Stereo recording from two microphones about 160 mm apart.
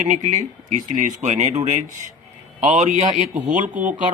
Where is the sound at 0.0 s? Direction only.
50° right (ahead or behind).